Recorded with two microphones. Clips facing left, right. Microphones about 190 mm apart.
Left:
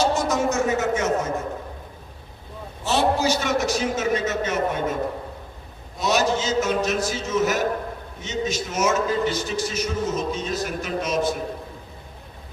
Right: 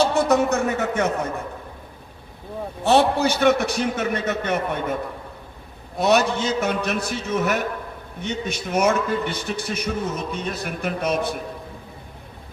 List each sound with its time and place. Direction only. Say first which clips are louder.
0.0 s a sound: right 3 dB; 60° right (ahead or behind)
2.8 s a man's voice: right 3 dB; 60° right (ahead or behind)
6.0 s a man's voice: right 3 dB; 60° right (ahead or behind)